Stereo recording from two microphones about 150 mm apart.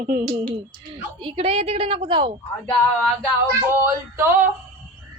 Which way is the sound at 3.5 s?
15° right (ahead or behind).